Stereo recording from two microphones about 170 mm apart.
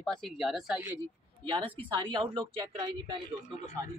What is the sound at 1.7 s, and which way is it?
A woman's voice, 30° right (ahead or behind).